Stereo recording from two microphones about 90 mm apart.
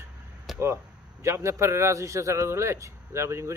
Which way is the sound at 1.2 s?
30° right (ahead or behind).